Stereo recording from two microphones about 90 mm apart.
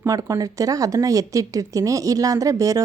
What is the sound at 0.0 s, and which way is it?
A woman's voice, 40° right (ahead or behind).